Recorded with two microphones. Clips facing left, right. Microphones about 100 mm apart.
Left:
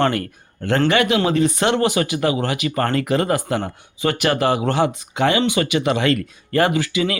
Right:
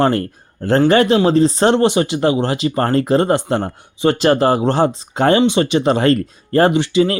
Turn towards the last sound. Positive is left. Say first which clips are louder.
# right 6 dB
turn(degrees=-30)  # may be behind; listen again after turning